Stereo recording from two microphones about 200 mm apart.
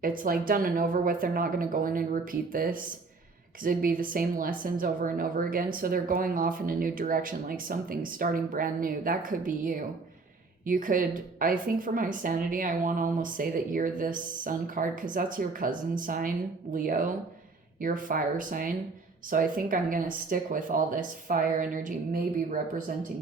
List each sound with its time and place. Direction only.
0.0 s a woman's voice: 45° right (ahead or behind)